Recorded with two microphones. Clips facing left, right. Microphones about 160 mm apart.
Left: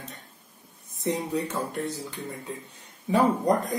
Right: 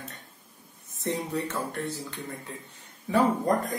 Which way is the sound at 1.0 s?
15° left (ahead or behind).